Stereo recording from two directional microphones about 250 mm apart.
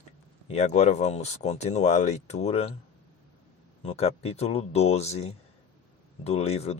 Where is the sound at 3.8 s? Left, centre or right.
Left.